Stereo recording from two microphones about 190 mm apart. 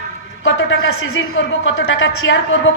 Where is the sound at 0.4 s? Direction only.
90° left.